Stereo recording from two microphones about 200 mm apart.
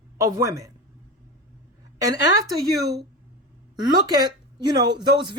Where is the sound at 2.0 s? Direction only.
20° right (ahead or behind).